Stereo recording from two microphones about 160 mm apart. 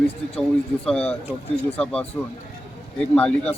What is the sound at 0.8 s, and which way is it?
A man's voice, 5° left (ahead or behind).